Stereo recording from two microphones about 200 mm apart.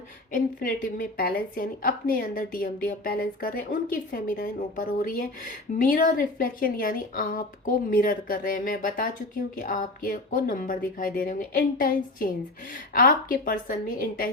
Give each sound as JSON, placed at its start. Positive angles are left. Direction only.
{"t": 0.3, "sound": "a woman's voice", "side_deg": 45}